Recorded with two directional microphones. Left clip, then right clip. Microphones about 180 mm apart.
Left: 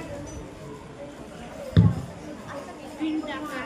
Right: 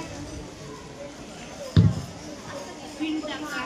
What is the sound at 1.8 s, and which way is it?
Basketball bounce, 60° right (ahead or behind).